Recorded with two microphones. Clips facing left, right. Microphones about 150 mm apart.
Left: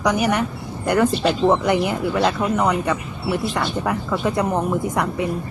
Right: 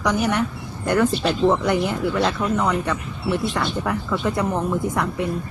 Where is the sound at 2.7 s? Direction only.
5° left (ahead or behind).